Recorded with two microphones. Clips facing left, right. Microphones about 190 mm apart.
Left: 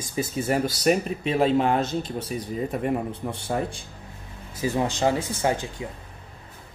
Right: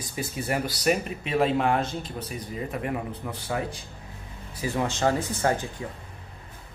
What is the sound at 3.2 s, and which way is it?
Speech, 35° left (ahead or behind).